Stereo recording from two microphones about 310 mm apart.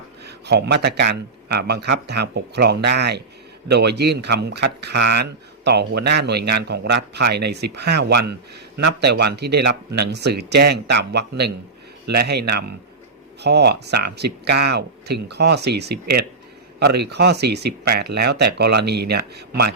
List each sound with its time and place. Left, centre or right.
0.3 s speech: right